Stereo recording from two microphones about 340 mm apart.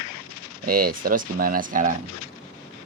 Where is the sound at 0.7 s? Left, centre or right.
Right.